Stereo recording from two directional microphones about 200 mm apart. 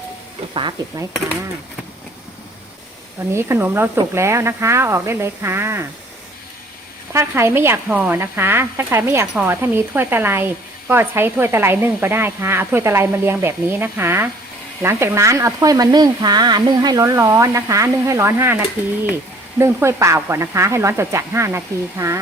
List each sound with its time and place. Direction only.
0.5 s speech: 25° right (ahead or behind)
3.3 s speech: 10° right (ahead or behind)
7.1 s speech: 15° right (ahead or behind)